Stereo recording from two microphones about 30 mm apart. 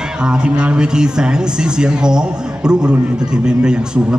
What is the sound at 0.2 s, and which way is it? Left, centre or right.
A man's voice, right.